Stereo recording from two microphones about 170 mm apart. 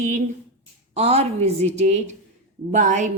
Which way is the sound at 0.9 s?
35° right (ahead or behind).